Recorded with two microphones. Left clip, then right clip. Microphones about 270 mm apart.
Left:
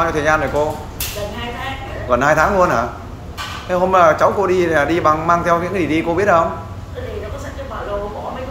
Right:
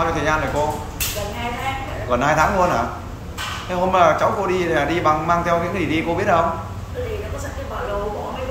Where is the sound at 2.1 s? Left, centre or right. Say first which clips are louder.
Left 4 dB; centre.